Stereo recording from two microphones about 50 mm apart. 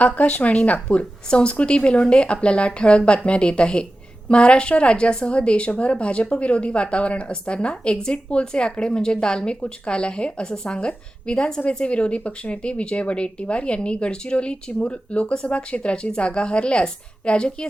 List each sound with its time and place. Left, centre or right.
0.0 s a woman's voice: left